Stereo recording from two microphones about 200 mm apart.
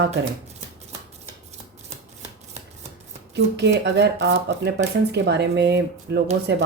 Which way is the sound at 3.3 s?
60° right (ahead or behind).